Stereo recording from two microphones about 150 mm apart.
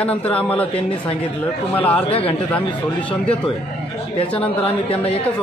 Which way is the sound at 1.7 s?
10° left (ahead or behind).